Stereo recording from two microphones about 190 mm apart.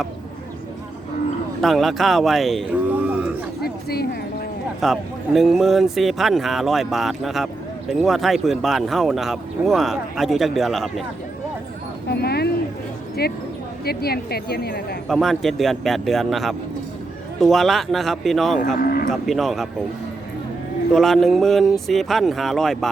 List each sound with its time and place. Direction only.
1.6 s speech: centre (ahead or behind)
3.1 s a sound: 5° right (ahead or behind)
3.6 s speech: 55° left (ahead or behind)
4.8 s speech: centre (ahead or behind)
12.0 s speech: 55° left (ahead or behind)
15.0 s speech: centre (ahead or behind)
18.8 s speech: 50° left (ahead or behind)
19.1 s speech: centre (ahead or behind)
20.9 s speech: centre (ahead or behind)